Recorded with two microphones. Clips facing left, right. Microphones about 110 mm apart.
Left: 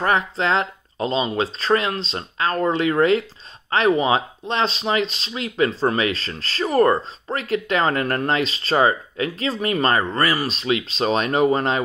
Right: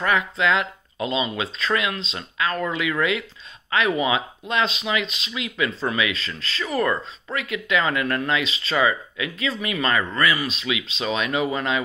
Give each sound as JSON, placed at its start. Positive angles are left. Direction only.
{"t": 0.0, "sound": "speech", "side_deg": 35}